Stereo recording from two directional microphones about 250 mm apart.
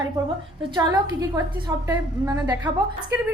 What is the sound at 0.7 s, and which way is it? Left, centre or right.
A woman's voice, centre.